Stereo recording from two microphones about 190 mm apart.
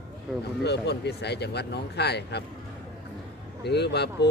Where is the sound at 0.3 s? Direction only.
Centre (ahead or behind).